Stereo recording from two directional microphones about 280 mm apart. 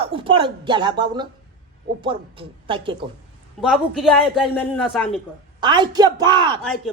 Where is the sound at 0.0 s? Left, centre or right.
Centre.